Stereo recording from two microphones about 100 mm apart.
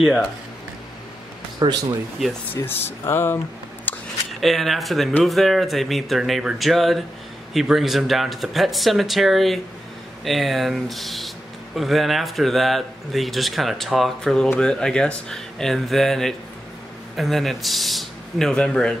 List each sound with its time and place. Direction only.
1.6 s speech: 50° right (ahead or behind)
2.5 s speech: 20° left (ahead or behind)
3.9 s a sound: 15° left (ahead or behind)
4.4 s speech: centre (ahead or behind)